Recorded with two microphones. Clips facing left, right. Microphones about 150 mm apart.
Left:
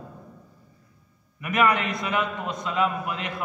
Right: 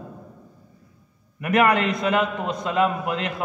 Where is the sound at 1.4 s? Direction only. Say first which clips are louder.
Right 4 dB; 55° right (ahead or behind).